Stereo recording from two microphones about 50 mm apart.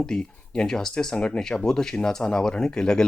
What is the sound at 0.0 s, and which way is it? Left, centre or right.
Speech, centre.